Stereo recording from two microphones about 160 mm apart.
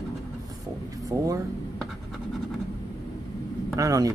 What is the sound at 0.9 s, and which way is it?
Speech, 20° right (ahead or behind).